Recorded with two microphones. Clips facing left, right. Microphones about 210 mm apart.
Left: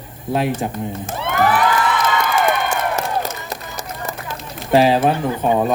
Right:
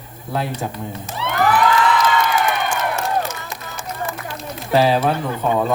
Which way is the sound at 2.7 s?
40° left (ahead or behind).